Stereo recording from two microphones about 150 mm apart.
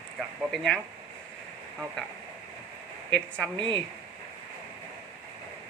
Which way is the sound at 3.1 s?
5° left (ahead or behind).